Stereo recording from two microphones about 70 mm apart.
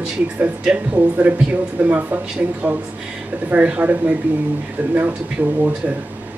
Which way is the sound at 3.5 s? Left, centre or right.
Right.